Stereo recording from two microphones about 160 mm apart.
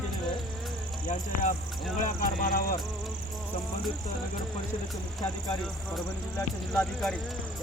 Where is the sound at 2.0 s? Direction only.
65° left (ahead or behind).